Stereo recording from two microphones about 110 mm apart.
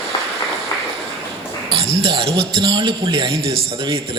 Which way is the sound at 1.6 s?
60° right (ahead or behind).